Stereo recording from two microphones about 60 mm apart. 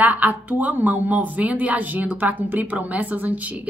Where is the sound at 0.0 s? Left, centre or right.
Right.